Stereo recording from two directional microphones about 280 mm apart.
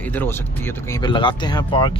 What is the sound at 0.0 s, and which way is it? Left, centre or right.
Speech, centre.